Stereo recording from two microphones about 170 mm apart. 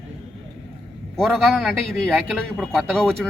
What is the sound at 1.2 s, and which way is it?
Speech, centre (ahead or behind).